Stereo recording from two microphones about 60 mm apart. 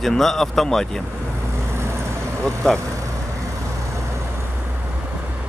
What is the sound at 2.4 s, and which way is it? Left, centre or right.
Speech, centre.